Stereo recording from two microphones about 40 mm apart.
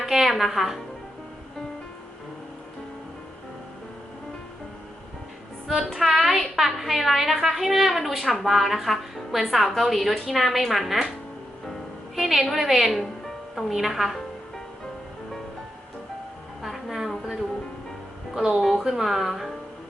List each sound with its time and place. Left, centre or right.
0.0 s speech: centre
5.9 s a woman's voice: centre
12.1 s a woman's voice: centre
12.9 s music: centre
13.7 s a woman's voice: centre
18.3 s a woman's voice: centre
18.6 s a woman's voice: centre